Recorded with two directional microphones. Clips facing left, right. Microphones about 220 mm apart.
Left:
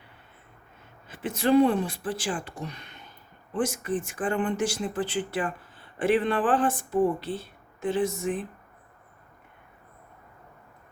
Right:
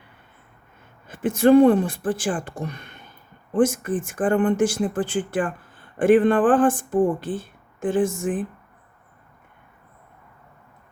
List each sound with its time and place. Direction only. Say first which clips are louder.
1.0 s speech: right 9 dB; 50° right (ahead or behind)